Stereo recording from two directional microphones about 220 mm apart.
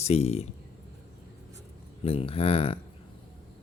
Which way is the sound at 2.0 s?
25° left (ahead or behind).